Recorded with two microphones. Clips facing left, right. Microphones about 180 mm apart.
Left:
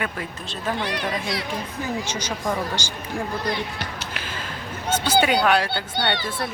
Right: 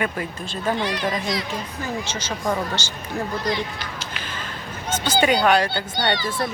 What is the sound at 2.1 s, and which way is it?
Speech, 15° left (ahead or behind).